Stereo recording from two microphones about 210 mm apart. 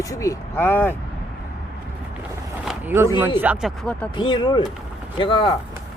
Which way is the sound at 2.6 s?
10° right (ahead or behind).